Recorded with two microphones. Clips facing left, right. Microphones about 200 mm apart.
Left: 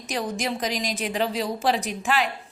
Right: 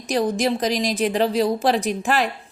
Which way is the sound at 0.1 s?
35° right (ahead or behind).